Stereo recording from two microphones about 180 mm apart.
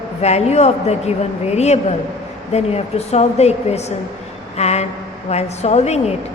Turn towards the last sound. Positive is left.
turn(degrees=35)  # may be behind; listen again after turning